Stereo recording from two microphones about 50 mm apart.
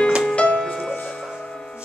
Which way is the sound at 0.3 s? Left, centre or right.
Left.